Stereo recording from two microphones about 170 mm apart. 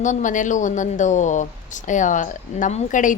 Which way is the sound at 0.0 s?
45° left (ahead or behind).